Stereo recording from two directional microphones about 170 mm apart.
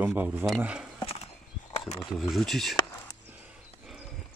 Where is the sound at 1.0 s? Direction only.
35° left (ahead or behind).